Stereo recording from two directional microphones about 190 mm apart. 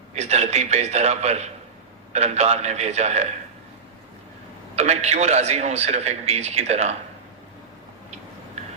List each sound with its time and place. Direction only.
0.1 s a man's voice: 35° right (ahead or behind)
4.7 s a man's voice: 35° right (ahead or behind)